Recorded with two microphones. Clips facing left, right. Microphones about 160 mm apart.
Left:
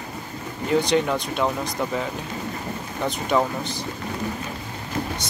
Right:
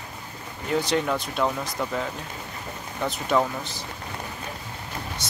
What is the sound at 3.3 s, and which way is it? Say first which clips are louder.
Speech: left 1 dB; centre (ahead or behind).